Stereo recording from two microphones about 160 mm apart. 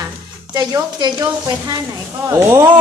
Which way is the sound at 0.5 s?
25° right (ahead or behind).